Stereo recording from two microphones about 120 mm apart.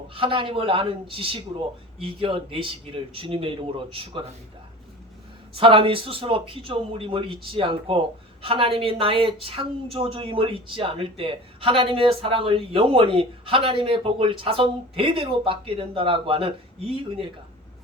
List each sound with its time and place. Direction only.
0.1 s speech: 45° right (ahead or behind)
5.5 s speech: 45° right (ahead or behind)